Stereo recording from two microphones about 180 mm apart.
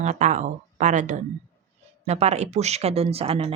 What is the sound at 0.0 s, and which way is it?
A woman's voice, 40° right (ahead or behind).